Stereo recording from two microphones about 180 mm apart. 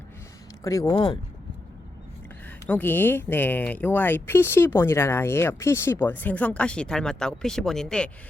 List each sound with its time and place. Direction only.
0.6 s speech: 20° left (ahead or behind)
0.9 s speech: 30° left (ahead or behind)
2.6 s speech: 10° left (ahead or behind)